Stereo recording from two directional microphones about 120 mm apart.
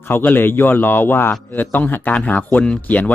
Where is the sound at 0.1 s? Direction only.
15° left (ahead or behind).